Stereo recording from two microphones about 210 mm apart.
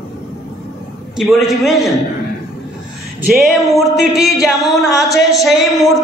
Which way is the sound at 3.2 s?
Centre (ahead or behind).